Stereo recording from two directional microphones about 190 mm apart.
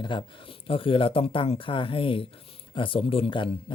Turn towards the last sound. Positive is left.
turn(degrees=25)  # may be behind; listen again after turning